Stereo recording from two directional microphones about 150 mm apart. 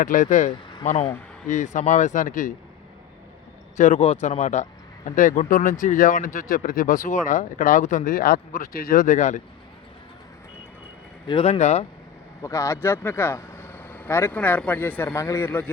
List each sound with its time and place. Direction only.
0.0 s speech: 60° left (ahead or behind)
3.8 s speech: 55° left (ahead or behind)
4.0 s speech: 45° left (ahead or behind)
11.3 s speech: 40° left (ahead or behind)
12.4 s speech: 20° left (ahead or behind)